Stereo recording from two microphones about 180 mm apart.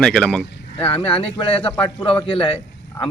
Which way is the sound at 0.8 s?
30° left (ahead or behind).